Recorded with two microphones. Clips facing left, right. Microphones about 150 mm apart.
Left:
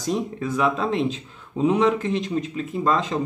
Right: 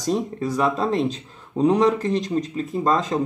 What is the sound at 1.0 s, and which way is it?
Speech, centre (ahead or behind).